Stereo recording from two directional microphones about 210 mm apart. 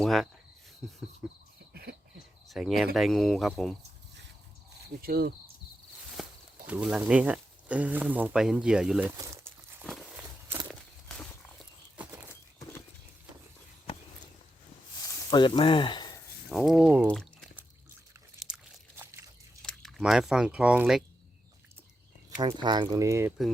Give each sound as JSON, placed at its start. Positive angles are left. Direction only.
{"t": 0.0, "sound": "speech", "side_deg": 0}
{"t": 1.7, "sound": "cricket", "side_deg": -50}
{"t": 2.5, "sound": "speech", "side_deg": 0}
{"t": 4.9, "sound": "speech", "side_deg": -45}
{"t": 6.2, "sound": "walk", "side_deg": 0}
{"t": 6.7, "sound": "speech", "side_deg": -5}
{"t": 9.1, "sound": "crumpling", "side_deg": -15}
{"t": 10.7, "sound": "walk", "side_deg": 5}
{"t": 15.0, "sound": "a sound", "side_deg": 20}
{"t": 16.5, "sound": "speech", "side_deg": 0}
{"t": 18.3, "sound": "biting", "side_deg": -5}
{"t": 19.6, "sound": "speech", "side_deg": 0}
{"t": 22.4, "sound": "speech", "side_deg": -20}